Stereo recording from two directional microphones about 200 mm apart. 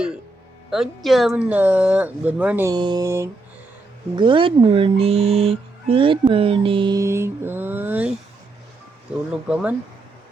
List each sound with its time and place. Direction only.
0.7 s speech: centre (ahead or behind)